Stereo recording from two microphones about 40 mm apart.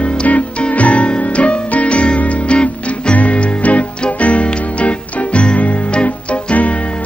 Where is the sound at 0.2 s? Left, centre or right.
Left.